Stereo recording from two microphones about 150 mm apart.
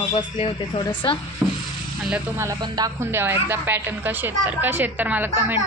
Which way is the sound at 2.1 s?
20° right (ahead or behind).